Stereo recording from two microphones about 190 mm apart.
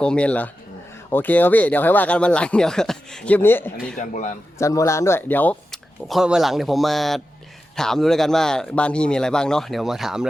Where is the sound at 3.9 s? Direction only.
40° left (ahead or behind).